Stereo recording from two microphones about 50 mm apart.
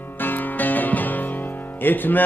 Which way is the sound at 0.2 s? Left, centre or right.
Left.